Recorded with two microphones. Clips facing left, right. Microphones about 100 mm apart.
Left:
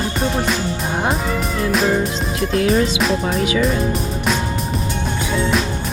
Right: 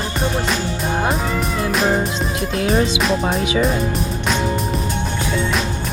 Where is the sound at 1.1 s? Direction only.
Centre (ahead or behind).